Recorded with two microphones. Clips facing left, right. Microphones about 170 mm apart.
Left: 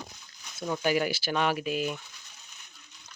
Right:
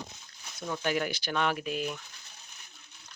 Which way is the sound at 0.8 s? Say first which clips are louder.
Left 4 dB; 5° left (ahead or behind).